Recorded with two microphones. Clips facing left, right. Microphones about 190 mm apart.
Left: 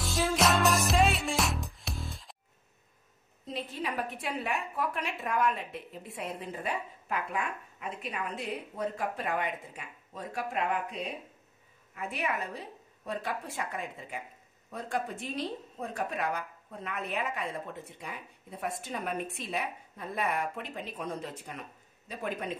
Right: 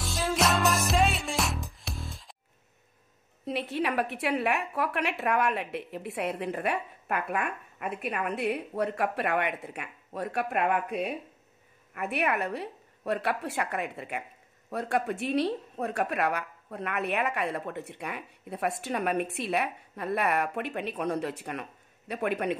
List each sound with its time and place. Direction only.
0.0 s music: centre (ahead or behind)
3.4 s a woman's voice: 70° right (ahead or behind)